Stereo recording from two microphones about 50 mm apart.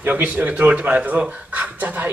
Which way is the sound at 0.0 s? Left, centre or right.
Right.